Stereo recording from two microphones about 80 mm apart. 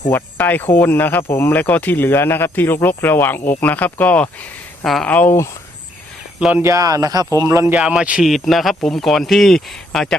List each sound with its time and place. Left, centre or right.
0.1 s speech: left
6.6 s speech: right
7.8 s a man's voice: centre
8.2 s speech: centre